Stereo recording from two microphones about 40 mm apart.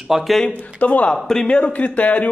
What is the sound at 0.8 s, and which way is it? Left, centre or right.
Speech, left.